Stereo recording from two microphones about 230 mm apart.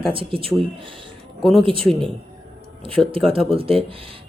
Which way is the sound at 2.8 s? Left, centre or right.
Right.